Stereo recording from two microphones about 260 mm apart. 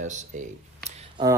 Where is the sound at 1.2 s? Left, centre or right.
Centre.